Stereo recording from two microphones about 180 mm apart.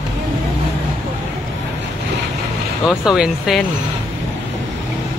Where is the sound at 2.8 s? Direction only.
Centre (ahead or behind).